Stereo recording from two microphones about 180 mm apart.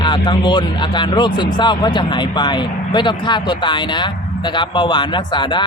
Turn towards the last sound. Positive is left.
turn(degrees=25)  # may be behind; listen again after turning